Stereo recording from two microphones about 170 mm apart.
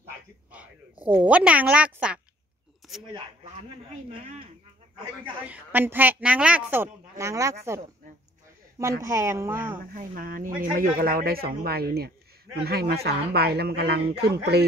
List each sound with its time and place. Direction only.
0.5 s a woman's voice: 10° right (ahead or behind)
2.8 s a sound: centre (ahead or behind)
3.6 s speech: 35° right (ahead or behind)
5.5 s a woman's voice: 10° right (ahead or behind)
9.0 s a woman's voice: 15° right (ahead or behind)
9.9 s speech: 55° right (ahead or behind); by 14.7 s 75° right (ahead or behind)